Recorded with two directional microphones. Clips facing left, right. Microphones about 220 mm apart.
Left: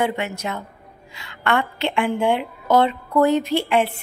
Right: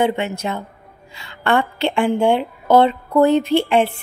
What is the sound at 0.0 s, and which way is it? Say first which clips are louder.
A woman's voice: right 4 dB; 25° right (ahead or behind).